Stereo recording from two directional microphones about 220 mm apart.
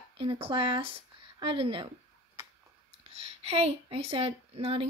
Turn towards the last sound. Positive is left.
turn(degrees=-25)  # may be behind; listen again after turning